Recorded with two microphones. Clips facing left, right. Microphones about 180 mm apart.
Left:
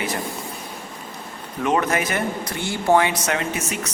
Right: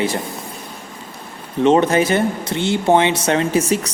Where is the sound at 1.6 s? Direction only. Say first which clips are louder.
Right 8 dB; 30° right (ahead or behind).